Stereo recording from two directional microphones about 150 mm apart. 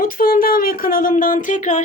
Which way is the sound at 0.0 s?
70° left (ahead or behind).